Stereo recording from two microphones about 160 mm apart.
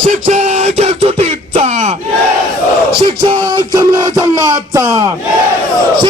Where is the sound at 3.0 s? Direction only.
35° right (ahead or behind).